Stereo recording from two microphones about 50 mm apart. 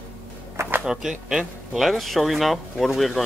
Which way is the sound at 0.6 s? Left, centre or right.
Right.